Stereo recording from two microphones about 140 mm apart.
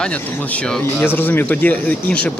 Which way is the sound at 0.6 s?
5° left (ahead or behind).